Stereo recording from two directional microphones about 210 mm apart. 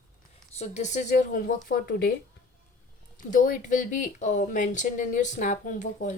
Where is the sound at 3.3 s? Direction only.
40° left (ahead or behind).